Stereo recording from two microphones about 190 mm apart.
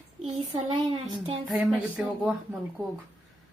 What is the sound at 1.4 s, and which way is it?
Speech, 5° right (ahead or behind).